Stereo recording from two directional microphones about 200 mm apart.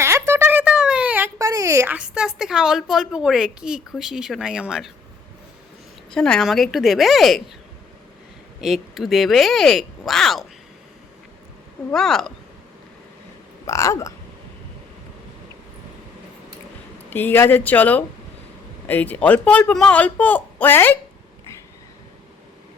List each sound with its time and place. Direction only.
0.0 s speech: 15° right (ahead or behind)
6.1 s speech: 5° left (ahead or behind)
8.6 s speech: centre (ahead or behind)
11.9 s speech: centre (ahead or behind)
13.7 s speech: 15° left (ahead or behind)
17.1 s speech: 10° left (ahead or behind)